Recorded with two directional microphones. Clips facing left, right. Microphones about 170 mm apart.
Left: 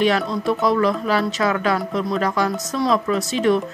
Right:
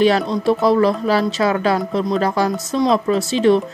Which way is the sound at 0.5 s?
30° right (ahead or behind).